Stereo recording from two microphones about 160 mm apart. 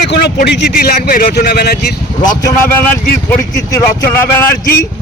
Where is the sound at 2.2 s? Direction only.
20° left (ahead or behind).